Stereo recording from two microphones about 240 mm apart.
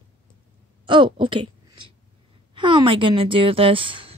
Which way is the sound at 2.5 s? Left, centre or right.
Centre.